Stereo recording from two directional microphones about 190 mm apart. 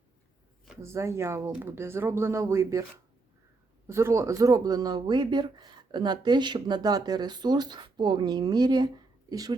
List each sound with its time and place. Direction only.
0.8 s speech: 15° right (ahead or behind)
3.8 s speech: 15° right (ahead or behind)